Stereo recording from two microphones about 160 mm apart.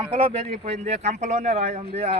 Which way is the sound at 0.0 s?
35° right (ahead or behind).